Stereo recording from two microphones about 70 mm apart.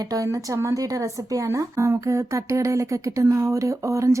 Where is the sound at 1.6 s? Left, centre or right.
Right.